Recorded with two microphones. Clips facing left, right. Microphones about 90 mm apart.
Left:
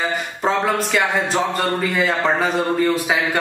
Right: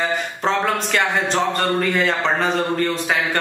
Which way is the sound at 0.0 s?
5° left (ahead or behind).